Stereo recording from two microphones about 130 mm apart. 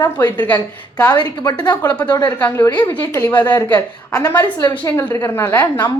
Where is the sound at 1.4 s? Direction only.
30° left (ahead or behind).